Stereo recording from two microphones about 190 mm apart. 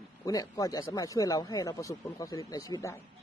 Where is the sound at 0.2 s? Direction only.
20° left (ahead or behind).